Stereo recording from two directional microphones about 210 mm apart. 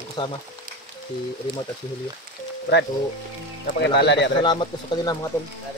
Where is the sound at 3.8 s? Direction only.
55° left (ahead or behind).